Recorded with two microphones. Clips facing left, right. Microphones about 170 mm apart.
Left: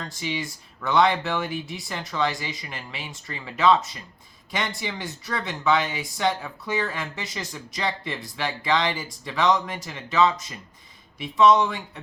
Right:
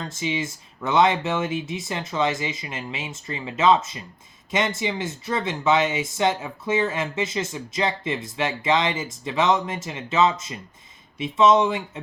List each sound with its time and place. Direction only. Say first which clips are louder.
0.0 s speech: right 3 dB; 20° right (ahead or behind)